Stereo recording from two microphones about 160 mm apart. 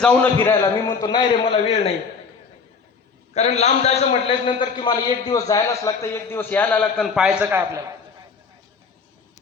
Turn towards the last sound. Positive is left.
turn(degrees=-15)  # may be behind; listen again after turning